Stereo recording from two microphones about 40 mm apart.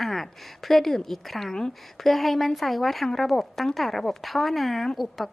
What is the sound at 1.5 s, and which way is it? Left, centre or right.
Speech, centre.